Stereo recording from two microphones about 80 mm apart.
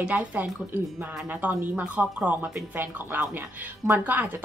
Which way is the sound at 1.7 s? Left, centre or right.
Centre.